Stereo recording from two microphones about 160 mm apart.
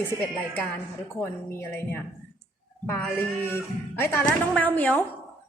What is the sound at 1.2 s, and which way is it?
A woman's voice, 15° left (ahead or behind).